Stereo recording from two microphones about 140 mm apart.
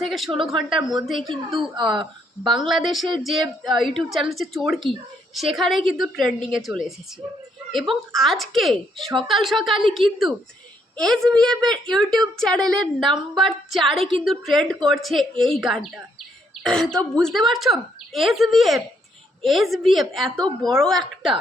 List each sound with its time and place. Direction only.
0.0 s speech: centre (ahead or behind)
1.3 s speech: 35° right (ahead or behind)
2.5 s speech: centre (ahead or behind)